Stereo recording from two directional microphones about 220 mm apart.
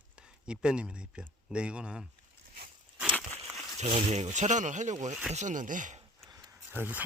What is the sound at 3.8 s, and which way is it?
Speech, 30° right (ahead or behind).